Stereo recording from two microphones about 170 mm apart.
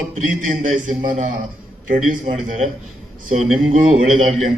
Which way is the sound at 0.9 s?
50° right (ahead or behind).